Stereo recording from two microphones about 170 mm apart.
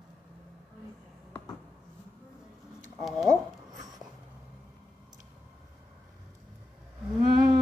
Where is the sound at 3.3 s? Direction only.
25° right (ahead or behind).